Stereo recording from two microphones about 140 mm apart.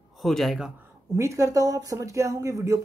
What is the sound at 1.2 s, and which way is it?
Speech, 20° right (ahead or behind).